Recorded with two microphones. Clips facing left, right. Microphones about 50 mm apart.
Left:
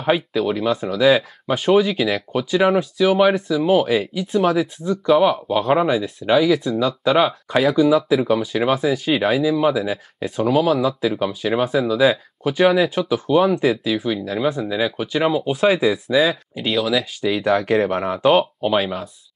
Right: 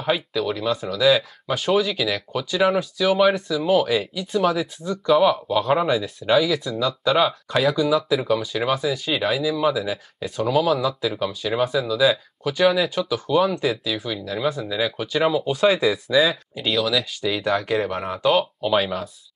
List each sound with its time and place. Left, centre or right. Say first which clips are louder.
0.0 s speech: left 4 dB; left
13.7 s speech: left 5 dB; centre
14.0 s speech: left 2 dB; left
17.6 s speech: left 5 dB; left
18.7 s speech: right 2 dB; centre